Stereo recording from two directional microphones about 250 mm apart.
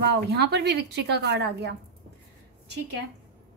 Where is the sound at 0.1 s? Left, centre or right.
Right.